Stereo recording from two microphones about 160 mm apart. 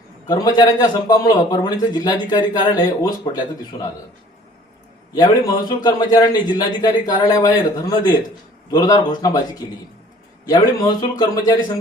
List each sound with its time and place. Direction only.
0.3 s a man's voice: 25° left (ahead or behind)
5.1 s a man's voice: 25° left (ahead or behind)